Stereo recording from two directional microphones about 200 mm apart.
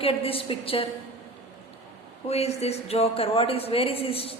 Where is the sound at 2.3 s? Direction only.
30° left (ahead or behind).